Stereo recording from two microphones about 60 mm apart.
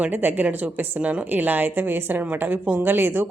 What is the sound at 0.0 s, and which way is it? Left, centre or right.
A woman's voice, right.